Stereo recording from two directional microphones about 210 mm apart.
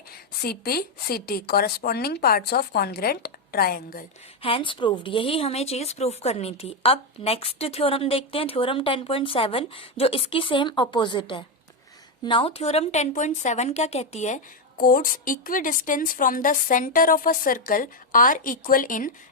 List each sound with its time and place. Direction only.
0.4 s speech: 45° left (ahead or behind)
4.4 s speech: 25° left (ahead or behind); by 19.1 s 40° left (ahead or behind)